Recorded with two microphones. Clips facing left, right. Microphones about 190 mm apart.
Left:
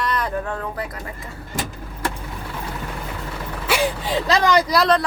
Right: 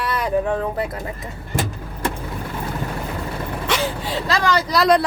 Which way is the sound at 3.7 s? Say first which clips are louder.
Left 2 dB; 5° left (ahead or behind).